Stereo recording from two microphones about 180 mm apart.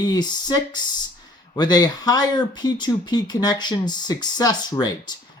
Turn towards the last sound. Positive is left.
turn(degrees=20)  # may be behind; listen again after turning